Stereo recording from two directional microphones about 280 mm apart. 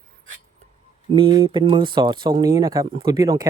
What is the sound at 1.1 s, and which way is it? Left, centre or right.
Speech, centre.